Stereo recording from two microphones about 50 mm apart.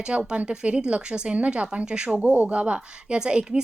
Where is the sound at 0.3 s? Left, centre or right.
Centre.